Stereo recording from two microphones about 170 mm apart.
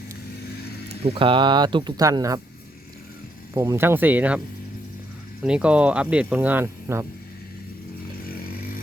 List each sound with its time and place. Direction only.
1.0 s speech: 30° right (ahead or behind)
3.5 s speech: 15° right (ahead or behind)
5.4 s speech: 5° right (ahead or behind)